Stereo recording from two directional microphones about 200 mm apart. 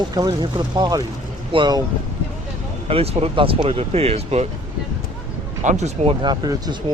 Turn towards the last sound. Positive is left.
turn(degrees=-20)  # may be behind; listen again after turning